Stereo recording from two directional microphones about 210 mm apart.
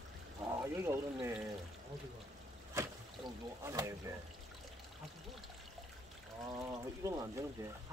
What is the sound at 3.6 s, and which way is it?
Speech, 15° right (ahead or behind).